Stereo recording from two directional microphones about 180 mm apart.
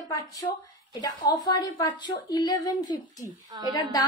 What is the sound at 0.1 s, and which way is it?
A woman's voice, 20° left (ahead or behind).